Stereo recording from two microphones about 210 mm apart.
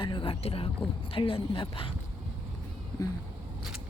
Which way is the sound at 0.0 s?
25° left (ahead or behind).